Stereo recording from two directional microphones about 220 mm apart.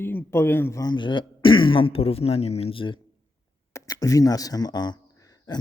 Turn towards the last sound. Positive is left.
turn(degrees=20)  # may be behind; listen again after turning